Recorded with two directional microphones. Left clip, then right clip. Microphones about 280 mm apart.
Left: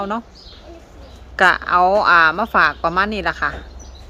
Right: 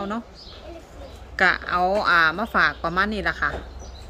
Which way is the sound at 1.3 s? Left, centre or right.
Centre.